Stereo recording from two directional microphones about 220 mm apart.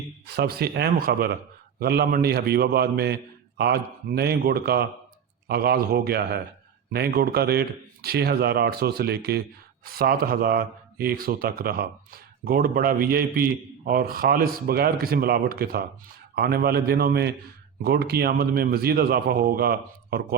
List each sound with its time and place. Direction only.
0.3 s a man's voice: 45° right (ahead or behind)